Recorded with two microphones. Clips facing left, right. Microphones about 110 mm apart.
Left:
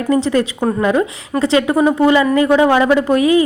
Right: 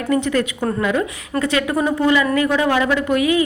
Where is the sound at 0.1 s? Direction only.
25° left (ahead or behind).